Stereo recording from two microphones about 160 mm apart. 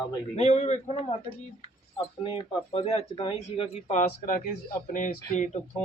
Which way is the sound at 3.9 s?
60° left (ahead or behind).